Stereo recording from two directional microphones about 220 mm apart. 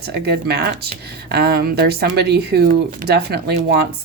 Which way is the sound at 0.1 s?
45° right (ahead or behind).